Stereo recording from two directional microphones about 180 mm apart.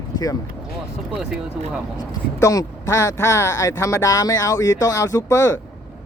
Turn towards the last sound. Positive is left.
turn(degrees=15)  # may be behind; listen again after turning